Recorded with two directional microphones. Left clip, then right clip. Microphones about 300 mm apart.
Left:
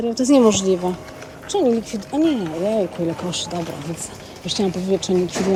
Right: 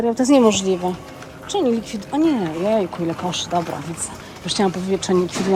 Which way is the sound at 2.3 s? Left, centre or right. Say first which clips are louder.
Right 2 dB; centre.